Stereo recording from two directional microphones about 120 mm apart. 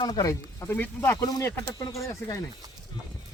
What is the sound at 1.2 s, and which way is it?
Speech, 25° left (ahead or behind).